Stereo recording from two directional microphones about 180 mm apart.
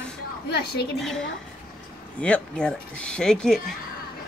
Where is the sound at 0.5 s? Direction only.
65° left (ahead or behind).